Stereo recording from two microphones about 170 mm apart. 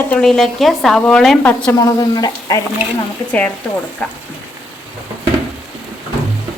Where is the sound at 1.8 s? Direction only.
20° left (ahead or behind).